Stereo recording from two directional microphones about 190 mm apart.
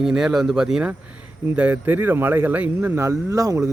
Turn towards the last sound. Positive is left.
turn(degrees=-15)  # may be behind; listen again after turning